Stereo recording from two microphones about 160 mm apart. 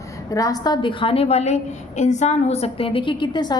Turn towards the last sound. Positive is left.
turn(degrees=25)  # may be behind; listen again after turning